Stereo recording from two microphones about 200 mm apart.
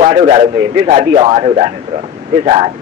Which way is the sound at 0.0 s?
30° right (ahead or behind).